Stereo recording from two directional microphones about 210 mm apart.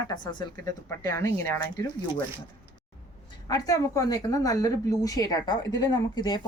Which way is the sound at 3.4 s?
15° left (ahead or behind).